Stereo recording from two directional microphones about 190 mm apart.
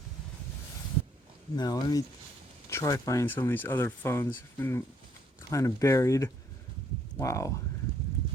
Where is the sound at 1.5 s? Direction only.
20° left (ahead or behind).